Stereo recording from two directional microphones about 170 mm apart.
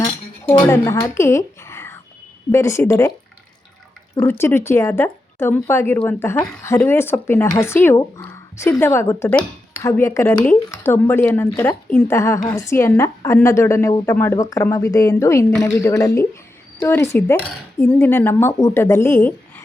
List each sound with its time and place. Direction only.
0.7 s a woman's voice: 15° left (ahead or behind)
4.1 s a woman's voice: 15° left (ahead or behind)